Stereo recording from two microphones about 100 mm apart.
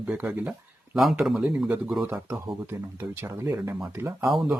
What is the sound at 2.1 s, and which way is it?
Speech, 25° right (ahead or behind).